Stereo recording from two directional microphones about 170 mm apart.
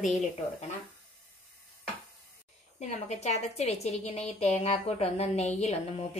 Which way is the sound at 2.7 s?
40° left (ahead or behind).